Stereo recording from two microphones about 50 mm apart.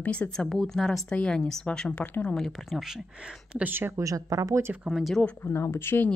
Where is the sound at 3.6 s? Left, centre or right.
Right.